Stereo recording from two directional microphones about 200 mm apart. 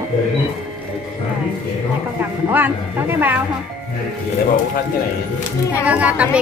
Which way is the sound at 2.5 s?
10° right (ahead or behind).